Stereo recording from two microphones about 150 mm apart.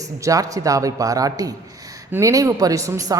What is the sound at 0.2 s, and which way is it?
A man's voice, 20° right (ahead or behind).